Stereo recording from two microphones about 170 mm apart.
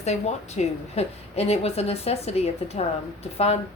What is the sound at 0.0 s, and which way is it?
A woman's voice, 40° left (ahead or behind).